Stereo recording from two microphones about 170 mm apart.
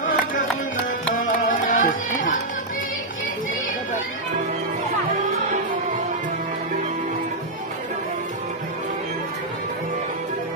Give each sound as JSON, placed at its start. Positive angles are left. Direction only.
{"t": 0.0, "sound": "music", "side_deg": 50}